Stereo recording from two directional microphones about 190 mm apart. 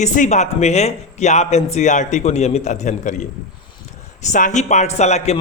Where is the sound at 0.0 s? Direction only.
40° left (ahead or behind).